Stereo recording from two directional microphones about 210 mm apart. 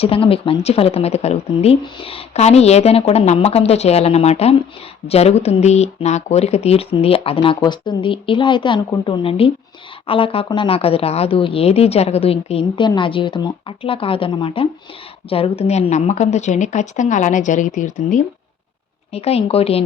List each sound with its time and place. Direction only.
0.0 s a woman's voice: 25° left (ahead or behind)